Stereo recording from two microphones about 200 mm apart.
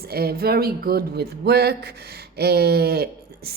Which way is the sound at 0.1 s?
50° right (ahead or behind).